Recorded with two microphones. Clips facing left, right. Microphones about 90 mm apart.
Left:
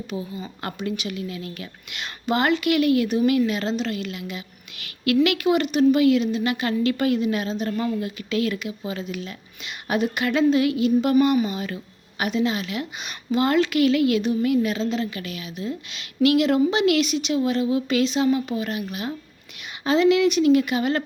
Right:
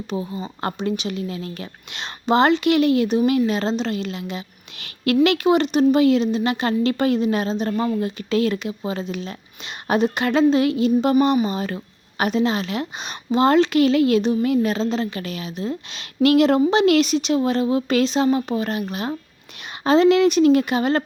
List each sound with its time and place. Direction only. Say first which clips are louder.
0.1 s a woman's voice: right 6 dB; 30° right (ahead or behind)